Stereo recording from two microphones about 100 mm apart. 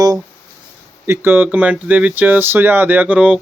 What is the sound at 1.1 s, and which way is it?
Speech, 20° right (ahead or behind).